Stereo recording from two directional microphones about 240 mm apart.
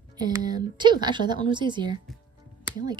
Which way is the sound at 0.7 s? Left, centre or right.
Centre.